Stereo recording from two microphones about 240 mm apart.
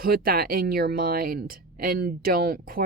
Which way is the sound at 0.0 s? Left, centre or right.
Right.